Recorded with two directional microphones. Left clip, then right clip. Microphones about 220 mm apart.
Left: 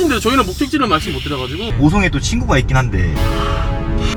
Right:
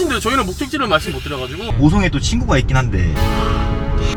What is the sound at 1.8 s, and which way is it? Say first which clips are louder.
Speech: left 1 dB; centre (ahead or behind).